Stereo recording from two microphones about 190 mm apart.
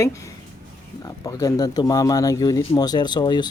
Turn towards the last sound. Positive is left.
turn(degrees=20)  # may be behind; listen again after turning